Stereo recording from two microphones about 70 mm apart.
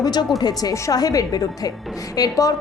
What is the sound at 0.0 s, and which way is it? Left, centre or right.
A woman's voice, left.